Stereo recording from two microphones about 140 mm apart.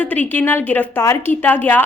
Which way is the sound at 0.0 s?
10° left (ahead or behind).